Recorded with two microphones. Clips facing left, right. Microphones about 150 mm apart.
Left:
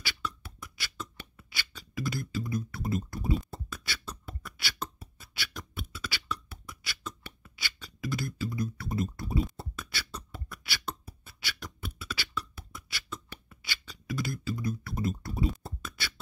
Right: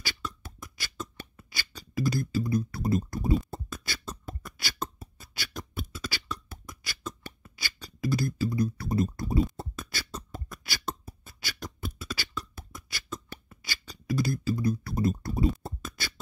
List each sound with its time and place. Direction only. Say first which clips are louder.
0.0 s beatboxing: even; 40° right (ahead or behind)